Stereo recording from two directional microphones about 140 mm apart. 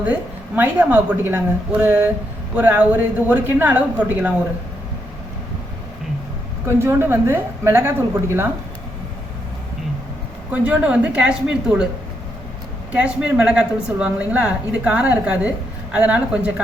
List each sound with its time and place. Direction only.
0.0 s a woman's voice: 10° right (ahead or behind)
6.7 s a woman's voice: 15° right (ahead or behind)
10.5 s a woman's voice: 10° right (ahead or behind)
12.9 s a woman's voice: 5° right (ahead or behind)